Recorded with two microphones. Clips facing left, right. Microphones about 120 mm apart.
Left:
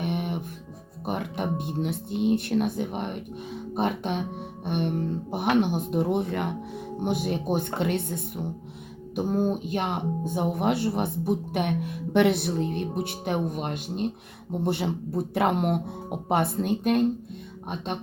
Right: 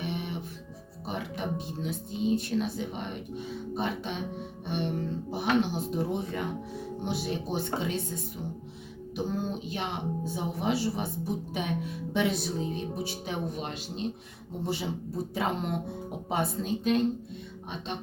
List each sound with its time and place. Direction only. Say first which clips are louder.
0.0 s music: left 5 dB; 55° left (ahead or behind)
1.0 s speech: left 5 dB; 55° left (ahead or behind)
9.1 s speech: left 7 dB; 50° left (ahead or behind)